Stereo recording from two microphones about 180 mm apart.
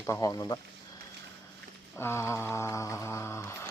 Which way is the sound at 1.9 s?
15° left (ahead or behind).